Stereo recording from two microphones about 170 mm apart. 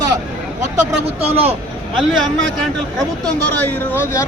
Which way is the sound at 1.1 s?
35° right (ahead or behind).